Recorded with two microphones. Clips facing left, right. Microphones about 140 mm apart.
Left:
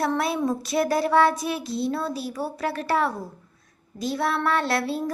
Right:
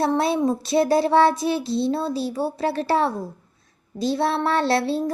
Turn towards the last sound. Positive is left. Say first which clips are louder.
# right 4 dB
turn(degrees=-30)  # may be behind; listen again after turning